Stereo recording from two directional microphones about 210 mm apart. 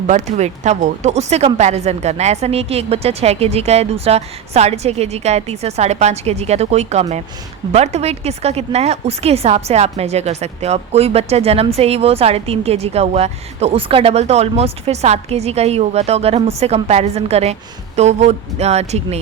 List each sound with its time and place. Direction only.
0.1 s a woman's voice: 35° right (ahead or behind)